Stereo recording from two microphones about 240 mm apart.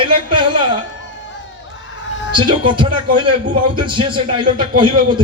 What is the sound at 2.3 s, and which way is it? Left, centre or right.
A man's voice, centre.